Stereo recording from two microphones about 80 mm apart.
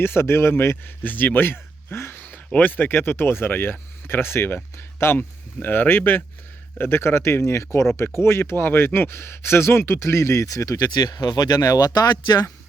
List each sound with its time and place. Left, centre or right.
0.0 s speech: left